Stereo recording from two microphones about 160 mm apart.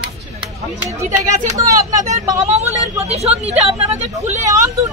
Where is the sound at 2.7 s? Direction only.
40° right (ahead or behind).